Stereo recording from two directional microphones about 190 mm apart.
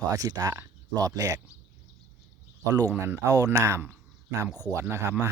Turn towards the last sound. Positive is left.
turn(degrees=-15)  # may be behind; listen again after turning